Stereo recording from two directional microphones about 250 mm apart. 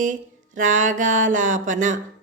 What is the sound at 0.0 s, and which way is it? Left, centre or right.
A woman's voice, right.